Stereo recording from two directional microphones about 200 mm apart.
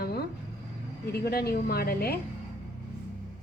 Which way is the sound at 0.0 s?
50° left (ahead or behind).